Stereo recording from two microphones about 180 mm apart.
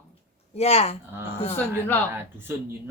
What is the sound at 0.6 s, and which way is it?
Speech, 35° left (ahead or behind).